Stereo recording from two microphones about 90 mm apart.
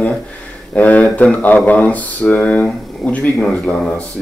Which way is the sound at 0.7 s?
15° left (ahead or behind).